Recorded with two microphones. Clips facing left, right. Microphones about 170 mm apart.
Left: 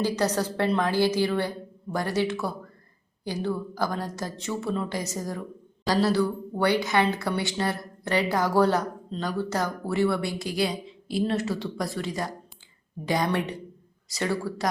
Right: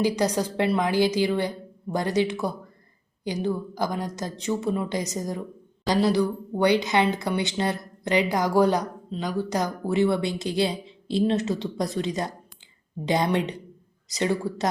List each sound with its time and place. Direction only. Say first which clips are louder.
0.0 s a woman's voice: right 2 dB; 15° right (ahead or behind)